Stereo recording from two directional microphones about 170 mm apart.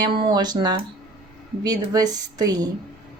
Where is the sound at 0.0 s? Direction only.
25° right (ahead or behind).